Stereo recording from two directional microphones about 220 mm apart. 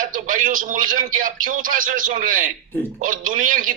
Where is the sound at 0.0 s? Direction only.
35° right (ahead or behind).